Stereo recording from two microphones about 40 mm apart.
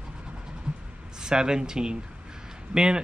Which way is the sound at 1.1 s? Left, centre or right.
Centre.